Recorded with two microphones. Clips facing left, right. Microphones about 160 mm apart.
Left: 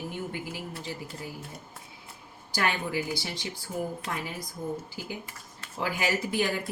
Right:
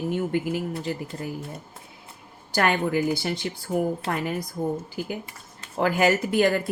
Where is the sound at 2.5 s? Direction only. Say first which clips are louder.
Right 7 dB; 55° right (ahead or behind).